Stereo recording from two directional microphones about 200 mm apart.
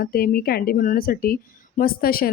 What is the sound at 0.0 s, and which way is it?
A woman's voice, 50° left (ahead or behind).